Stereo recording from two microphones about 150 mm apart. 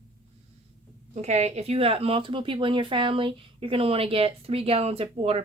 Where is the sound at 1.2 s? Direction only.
50° right (ahead or behind).